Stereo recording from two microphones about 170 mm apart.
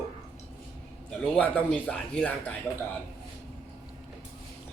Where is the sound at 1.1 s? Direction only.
5° left (ahead or behind).